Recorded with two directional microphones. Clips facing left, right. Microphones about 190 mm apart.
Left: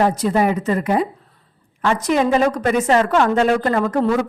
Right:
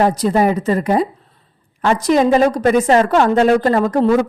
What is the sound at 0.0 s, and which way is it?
A woman's voice, 35° right (ahead or behind).